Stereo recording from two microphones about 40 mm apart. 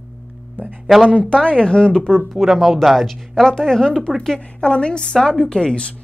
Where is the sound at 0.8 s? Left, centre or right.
Centre.